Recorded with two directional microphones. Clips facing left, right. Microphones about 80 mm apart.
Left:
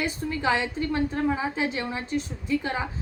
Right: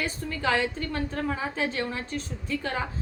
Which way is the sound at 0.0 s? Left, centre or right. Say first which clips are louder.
Left 2 dB; centre.